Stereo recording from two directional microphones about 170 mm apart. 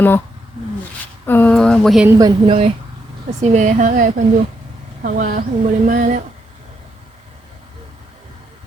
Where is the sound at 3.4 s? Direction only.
45° right (ahead or behind).